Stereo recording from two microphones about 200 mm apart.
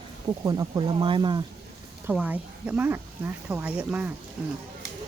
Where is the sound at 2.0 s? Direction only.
10° right (ahead or behind).